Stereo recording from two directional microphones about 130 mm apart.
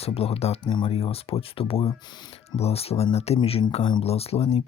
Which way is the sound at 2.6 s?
50° left (ahead or behind).